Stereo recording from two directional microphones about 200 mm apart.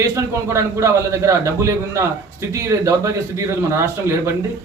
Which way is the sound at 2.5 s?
15° right (ahead or behind).